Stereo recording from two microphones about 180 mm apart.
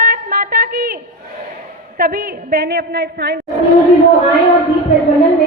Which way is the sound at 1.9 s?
55° right (ahead or behind).